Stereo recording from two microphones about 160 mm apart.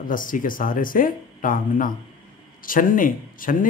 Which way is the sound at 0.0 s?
60° left (ahead or behind).